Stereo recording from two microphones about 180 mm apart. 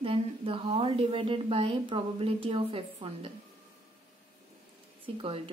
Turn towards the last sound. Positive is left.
turn(degrees=-30)  # may be behind; listen again after turning